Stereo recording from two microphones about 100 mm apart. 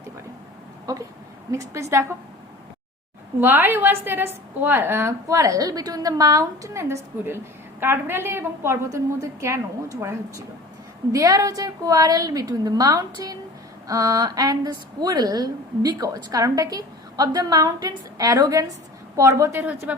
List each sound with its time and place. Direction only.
1.5 s a woman's voice: 30° right (ahead or behind)
3.4 s a woman's voice: 20° right (ahead or behind)